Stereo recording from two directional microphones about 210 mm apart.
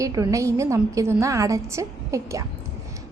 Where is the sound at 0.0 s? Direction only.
15° right (ahead or behind).